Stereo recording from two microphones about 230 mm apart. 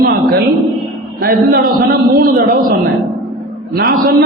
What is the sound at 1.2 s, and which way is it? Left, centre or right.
A man's voice, right.